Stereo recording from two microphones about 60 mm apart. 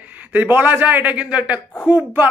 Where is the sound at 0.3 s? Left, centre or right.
Right.